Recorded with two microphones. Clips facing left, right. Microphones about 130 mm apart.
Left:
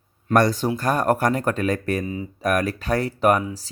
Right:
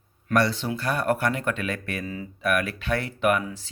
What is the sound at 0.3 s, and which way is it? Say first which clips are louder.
Speech: left 5 dB; 45° left (ahead or behind).